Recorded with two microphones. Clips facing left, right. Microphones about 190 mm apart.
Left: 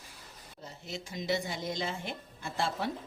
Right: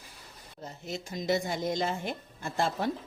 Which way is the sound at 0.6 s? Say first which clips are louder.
Right 4 dB; 45° right (ahead or behind).